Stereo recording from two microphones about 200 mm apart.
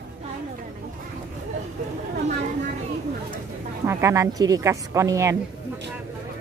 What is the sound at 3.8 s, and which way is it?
Speech, 15° right (ahead or behind).